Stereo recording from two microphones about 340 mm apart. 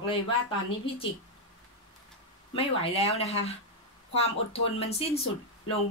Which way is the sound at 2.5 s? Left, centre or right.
Centre.